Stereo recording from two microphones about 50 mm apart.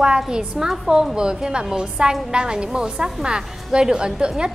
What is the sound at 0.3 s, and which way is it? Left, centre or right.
A woman's voice, centre.